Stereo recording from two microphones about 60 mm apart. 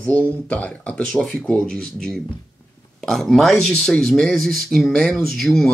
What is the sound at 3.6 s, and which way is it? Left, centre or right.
Speech, centre.